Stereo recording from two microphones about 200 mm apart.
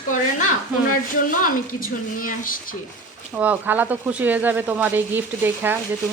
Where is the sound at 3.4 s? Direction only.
10° right (ahead or behind).